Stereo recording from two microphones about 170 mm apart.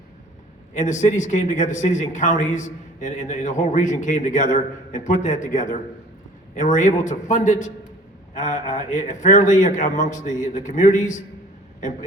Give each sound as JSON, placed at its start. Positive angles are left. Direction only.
{"t": 0.7, "sound": "a man's voice", "side_deg": 45}